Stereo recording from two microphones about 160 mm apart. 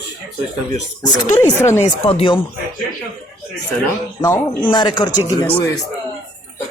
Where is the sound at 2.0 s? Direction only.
35° left (ahead or behind).